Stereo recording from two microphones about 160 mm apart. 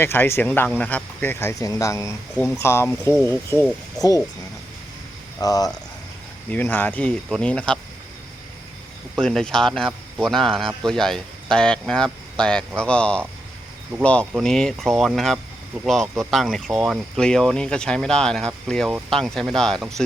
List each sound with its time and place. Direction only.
0.0 s speech: 15° left (ahead or behind)
5.4 s speech: 25° left (ahead or behind)
6.5 s speech: 10° left (ahead or behind)
9.1 s speech: 5° left (ahead or behind)